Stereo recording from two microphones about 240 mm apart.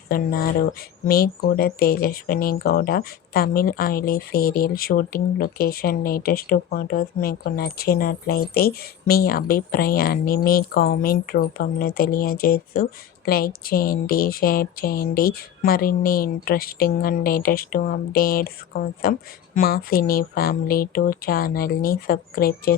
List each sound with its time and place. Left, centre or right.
0.1 s speech: left